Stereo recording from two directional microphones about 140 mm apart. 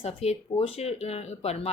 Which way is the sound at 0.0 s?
45° left (ahead or behind).